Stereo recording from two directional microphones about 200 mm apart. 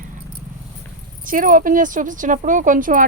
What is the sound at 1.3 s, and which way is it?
Speech, 45° right (ahead or behind).